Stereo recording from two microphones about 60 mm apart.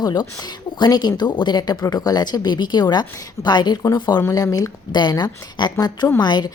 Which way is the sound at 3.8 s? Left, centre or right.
Left.